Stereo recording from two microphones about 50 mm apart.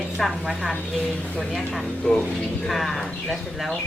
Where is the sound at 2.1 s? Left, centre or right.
Centre.